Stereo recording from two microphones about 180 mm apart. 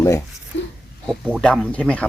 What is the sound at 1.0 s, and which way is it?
Speech, 5° left (ahead or behind).